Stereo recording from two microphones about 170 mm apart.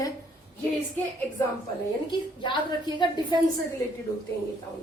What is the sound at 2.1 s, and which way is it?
Speech, 30° left (ahead or behind).